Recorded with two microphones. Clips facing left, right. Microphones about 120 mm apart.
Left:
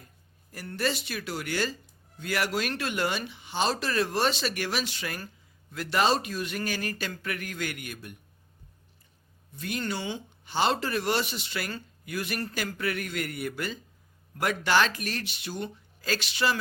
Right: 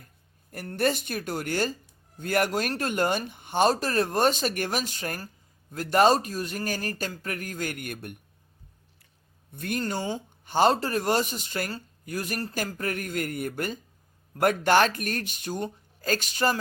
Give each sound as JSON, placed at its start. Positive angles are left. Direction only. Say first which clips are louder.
{"t": 0.5, "sound": "speech", "louder": "right 4 dB", "side_deg": -50}
{"t": 9.5, "sound": "speech", "louder": "right 3 dB", "side_deg": -55}
{"t": 9.8, "sound": "speech", "louder": "right 3 dB", "side_deg": -40}